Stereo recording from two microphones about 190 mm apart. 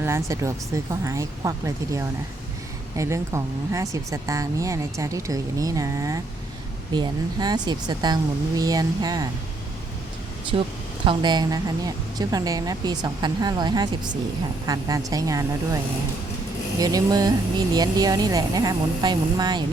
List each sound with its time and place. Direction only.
0.0 s a woman's voice: 15° right (ahead or behind)
10.5 s a woman's voice: 25° right (ahead or behind)
16.8 s a woman's voice: 20° right (ahead or behind)